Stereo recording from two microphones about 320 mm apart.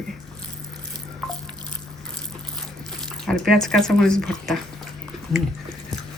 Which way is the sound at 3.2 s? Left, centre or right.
Centre.